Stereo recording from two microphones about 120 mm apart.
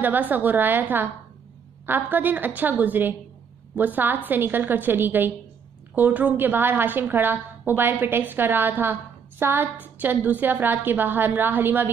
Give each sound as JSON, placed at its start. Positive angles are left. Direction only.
{"t": 0.0, "sound": "a woman's voice", "side_deg": -15}